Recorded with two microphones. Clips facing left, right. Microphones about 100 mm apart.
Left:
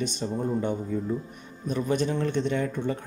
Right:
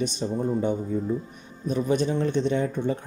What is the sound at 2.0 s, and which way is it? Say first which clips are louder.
Speech: right 2 dB; 20° right (ahead or behind).